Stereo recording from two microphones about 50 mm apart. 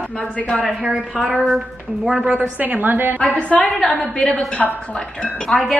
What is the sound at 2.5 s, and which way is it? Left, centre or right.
Speech, right.